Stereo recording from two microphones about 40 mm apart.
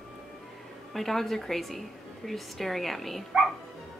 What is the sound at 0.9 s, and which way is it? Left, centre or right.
A woman's voice, centre.